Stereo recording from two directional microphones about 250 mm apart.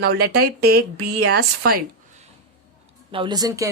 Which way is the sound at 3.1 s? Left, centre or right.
Centre.